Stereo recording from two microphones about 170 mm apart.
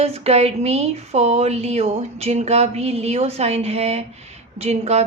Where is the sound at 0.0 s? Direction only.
35° right (ahead or behind).